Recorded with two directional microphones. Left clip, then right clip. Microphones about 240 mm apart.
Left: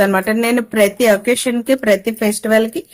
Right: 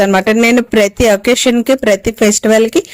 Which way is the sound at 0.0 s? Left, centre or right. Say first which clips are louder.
Right 5 dB; right.